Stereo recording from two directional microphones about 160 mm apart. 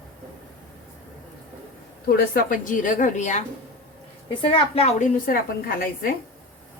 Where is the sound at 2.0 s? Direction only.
65° left (ahead or behind); by 3.4 s 50° left (ahead or behind).